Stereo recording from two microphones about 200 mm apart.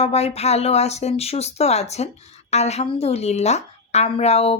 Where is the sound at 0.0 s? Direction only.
30° left (ahead or behind).